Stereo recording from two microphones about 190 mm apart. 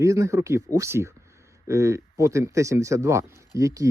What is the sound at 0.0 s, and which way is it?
Speech, 15° right (ahead or behind).